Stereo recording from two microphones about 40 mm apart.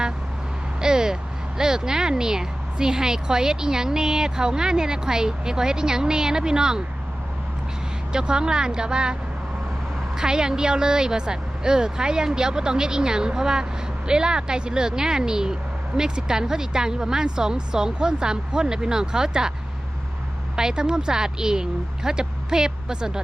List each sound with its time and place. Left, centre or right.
0.8 s speech: centre
8.1 s a woman's voice: right
10.2 s a woman's voice: centre
20.6 s speech: centre